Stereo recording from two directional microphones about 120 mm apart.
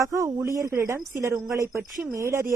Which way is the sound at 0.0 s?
25° right (ahead or behind).